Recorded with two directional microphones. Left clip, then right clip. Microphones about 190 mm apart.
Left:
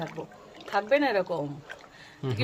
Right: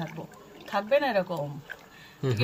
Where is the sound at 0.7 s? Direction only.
35° left (ahead or behind).